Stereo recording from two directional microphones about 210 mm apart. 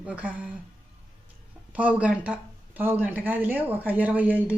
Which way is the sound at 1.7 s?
5° right (ahead or behind).